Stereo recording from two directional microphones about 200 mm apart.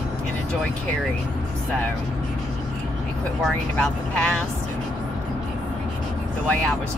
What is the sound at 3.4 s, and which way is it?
Speech, 5° left (ahead or behind).